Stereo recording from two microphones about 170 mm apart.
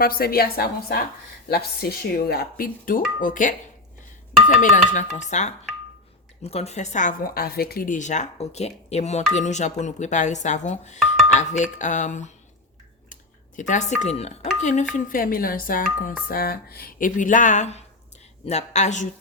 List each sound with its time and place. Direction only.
0.0 s a woman's voice: 60° left (ahead or behind); by 12.3 s 45° left (ahead or behind)
13.6 s a woman's voice: 45° left (ahead or behind)
14.6 s a sound: 45° left (ahead or behind)
14.9 s a woman's voice: 55° left (ahead or behind)